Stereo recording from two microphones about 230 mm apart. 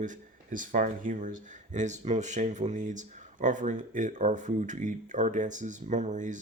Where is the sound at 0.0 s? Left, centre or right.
Right.